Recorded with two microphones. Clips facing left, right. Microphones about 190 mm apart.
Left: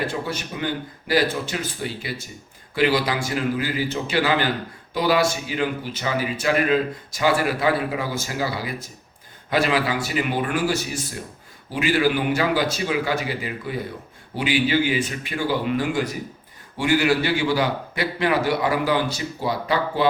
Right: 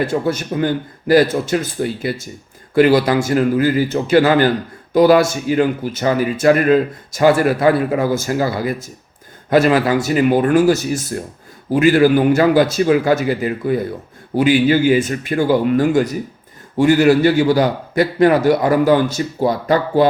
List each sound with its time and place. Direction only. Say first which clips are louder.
0.1 s speech: right 10 dB; 45° right (ahead or behind)